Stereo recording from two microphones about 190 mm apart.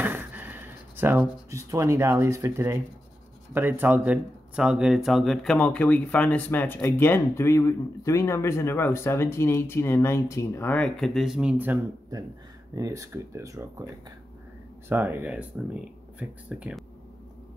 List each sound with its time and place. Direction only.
0.0 s speech: 10° right (ahead or behind)
14.9 s speech: 10° right (ahead or behind)